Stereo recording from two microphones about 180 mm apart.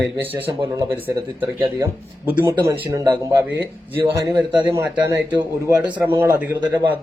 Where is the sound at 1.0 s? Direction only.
25° right (ahead or behind).